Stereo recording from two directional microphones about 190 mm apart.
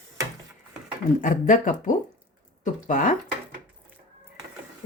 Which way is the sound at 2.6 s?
45° left (ahead or behind).